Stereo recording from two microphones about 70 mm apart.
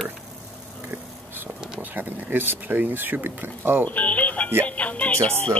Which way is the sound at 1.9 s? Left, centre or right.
Right.